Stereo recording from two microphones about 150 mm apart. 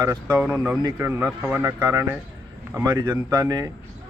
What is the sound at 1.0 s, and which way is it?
Speech, 15° right (ahead or behind).